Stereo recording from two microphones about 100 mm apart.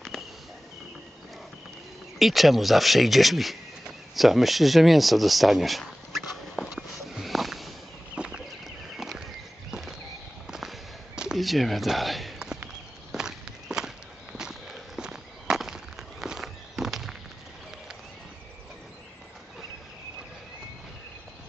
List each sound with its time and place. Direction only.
2.1 s speech: centre (ahead or behind)
6.5 s walk: centre (ahead or behind)
8.2 s a sound: 10° right (ahead or behind)
9.7 s walk: 5° right (ahead or behind)
10.4 s a sound: 5° right (ahead or behind)
13.1 s walk: 5° right (ahead or behind)